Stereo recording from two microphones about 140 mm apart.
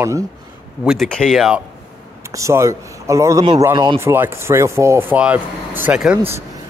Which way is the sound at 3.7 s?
35° right (ahead or behind).